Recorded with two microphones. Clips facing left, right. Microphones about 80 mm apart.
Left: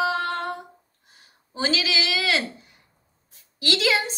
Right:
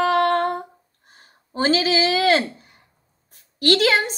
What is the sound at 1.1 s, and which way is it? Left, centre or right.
A woman's voice, right.